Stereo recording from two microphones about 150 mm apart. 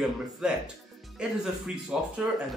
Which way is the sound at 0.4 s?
5° right (ahead or behind).